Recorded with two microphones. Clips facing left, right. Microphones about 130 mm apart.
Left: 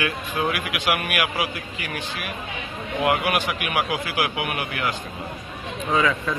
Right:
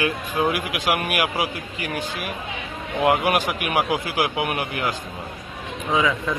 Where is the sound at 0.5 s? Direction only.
40° right (ahead or behind).